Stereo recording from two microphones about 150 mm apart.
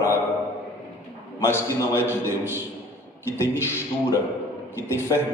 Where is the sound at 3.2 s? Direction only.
15° left (ahead or behind).